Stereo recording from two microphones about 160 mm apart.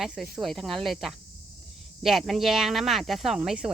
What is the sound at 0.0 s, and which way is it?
Speech, 5° right (ahead or behind).